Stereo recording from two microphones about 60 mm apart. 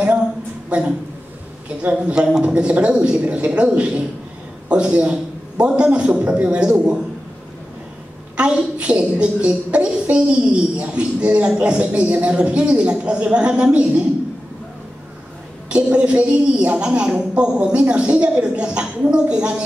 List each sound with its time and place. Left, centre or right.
0.7 s speech: right
2.0 s a woman's voice: centre
8.4 s a woman's voice: centre
15.7 s a woman's voice: centre